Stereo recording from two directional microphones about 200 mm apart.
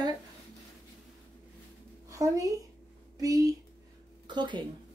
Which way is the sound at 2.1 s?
15° right (ahead or behind).